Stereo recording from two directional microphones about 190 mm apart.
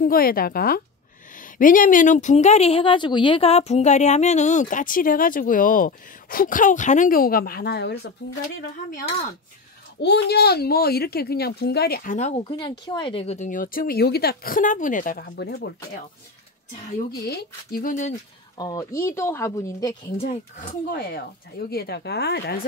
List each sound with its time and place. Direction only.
0.0 s speech: 50° left (ahead or behind)
10.0 s speech: 60° left (ahead or behind)
17.2 s speech: 55° left (ahead or behind)
18.6 s speech: 20° left (ahead or behind)
20.2 s speech: 30° left (ahead or behind)
20.9 s speech: 55° left (ahead or behind)